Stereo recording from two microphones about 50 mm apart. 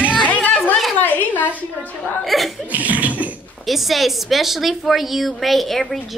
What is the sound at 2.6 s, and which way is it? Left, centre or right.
Cough, right.